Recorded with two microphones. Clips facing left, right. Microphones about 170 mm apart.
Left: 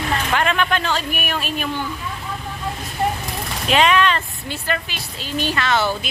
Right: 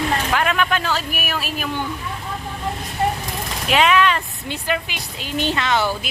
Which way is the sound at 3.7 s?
5° right (ahead or behind).